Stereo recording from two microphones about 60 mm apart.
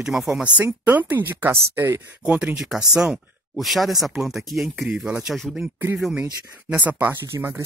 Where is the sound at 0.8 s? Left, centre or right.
Right.